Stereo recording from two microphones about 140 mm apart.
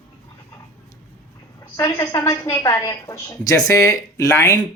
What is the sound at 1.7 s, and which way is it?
A woman's voice, 25° left (ahead or behind).